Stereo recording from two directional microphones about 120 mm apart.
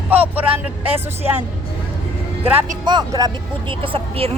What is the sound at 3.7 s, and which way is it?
Speech, 45° right (ahead or behind).